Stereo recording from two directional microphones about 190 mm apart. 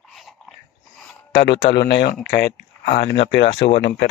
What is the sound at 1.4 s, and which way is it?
Speech, 60° left (ahead or behind).